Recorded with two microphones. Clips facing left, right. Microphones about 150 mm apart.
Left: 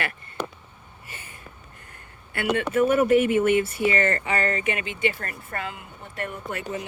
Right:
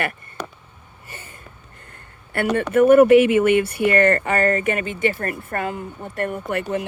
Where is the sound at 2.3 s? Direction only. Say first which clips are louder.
Right 5 dB; 50° right (ahead or behind).